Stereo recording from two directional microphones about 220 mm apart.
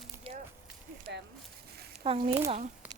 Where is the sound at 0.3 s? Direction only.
25° right (ahead or behind).